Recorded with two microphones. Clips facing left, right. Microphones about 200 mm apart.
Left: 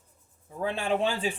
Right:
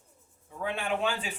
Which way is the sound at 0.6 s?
35° left (ahead or behind).